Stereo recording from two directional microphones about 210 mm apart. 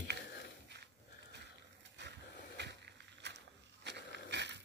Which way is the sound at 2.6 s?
55° right (ahead or behind).